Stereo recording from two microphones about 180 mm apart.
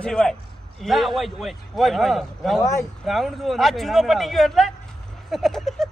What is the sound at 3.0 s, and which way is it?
A man's voice, centre (ahead or behind).